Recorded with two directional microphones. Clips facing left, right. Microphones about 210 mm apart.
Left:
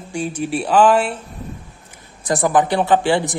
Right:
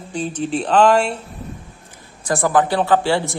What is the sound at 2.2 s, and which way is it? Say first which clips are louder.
A man's voice: left 1 dB; 20° left (ahead or behind).